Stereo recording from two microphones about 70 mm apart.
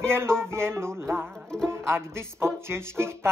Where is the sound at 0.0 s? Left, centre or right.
Right.